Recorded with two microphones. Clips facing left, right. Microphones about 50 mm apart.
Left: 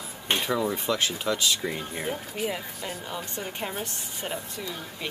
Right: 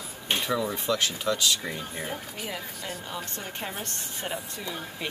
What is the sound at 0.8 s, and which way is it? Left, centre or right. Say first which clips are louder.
Speech: even; left.